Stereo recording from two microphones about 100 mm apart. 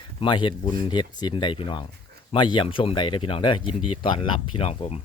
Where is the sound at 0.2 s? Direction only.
55° left (ahead or behind); by 4.9 s 75° left (ahead or behind).